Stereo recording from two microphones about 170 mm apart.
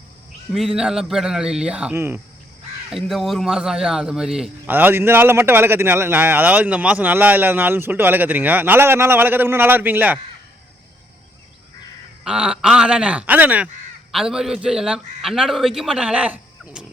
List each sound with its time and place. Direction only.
0.8 s a man's voice: 5° right (ahead or behind)
2.9 s a man's voice: centre (ahead or behind)
12.2 s a man's voice: 5° right (ahead or behind)